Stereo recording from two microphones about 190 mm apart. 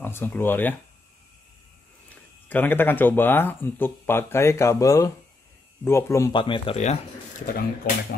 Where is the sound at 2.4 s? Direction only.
10° left (ahead or behind); by 7.0 s 35° left (ahead or behind).